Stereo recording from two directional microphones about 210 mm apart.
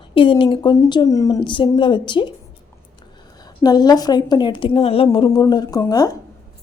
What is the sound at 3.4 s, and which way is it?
Speech, 20° left (ahead or behind).